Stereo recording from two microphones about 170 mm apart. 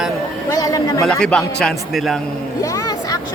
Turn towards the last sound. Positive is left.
turn(degrees=20)  # may be behind; listen again after turning